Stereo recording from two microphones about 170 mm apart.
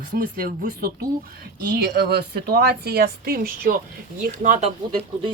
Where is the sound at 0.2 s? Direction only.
55° right (ahead or behind).